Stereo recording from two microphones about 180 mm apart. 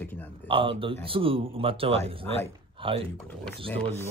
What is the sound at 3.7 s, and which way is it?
Speech, 10° left (ahead or behind).